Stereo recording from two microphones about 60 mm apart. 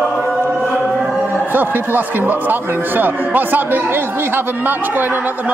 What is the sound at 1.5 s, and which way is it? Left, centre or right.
Speech, right.